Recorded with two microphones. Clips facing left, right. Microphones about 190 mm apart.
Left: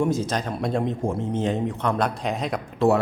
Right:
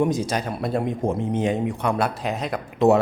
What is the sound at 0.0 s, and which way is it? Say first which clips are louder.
Speech: right 1 dB; 15° right (ahead or behind).